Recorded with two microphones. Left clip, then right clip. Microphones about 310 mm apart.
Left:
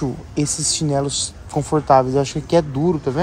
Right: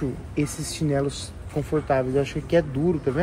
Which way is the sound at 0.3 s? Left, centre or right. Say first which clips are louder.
Left 10 dB; centre.